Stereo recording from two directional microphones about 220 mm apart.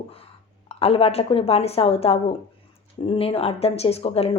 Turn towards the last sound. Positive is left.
turn(degrees=25)  # may be behind; listen again after turning